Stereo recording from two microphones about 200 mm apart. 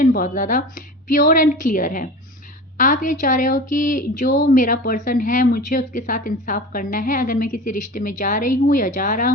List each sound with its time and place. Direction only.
0.0 s a woman's voice: 40° left (ahead or behind)